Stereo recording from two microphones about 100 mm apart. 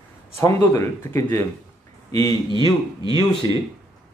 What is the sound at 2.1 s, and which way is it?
Speech, 35° left (ahead or behind).